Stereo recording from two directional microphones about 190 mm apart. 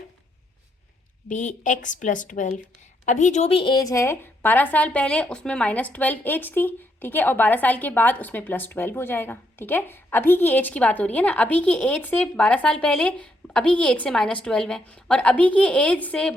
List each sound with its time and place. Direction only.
1.3 s a woman's voice: 40° left (ahead or behind); by 16.3 s 5° left (ahead or behind)